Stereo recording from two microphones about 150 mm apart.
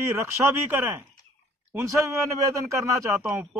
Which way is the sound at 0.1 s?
20° right (ahead or behind).